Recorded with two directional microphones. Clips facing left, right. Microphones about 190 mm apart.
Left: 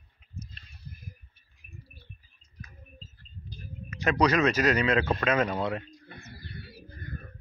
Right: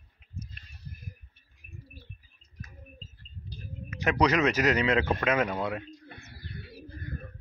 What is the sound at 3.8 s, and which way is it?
A man's voice, 15° right (ahead or behind).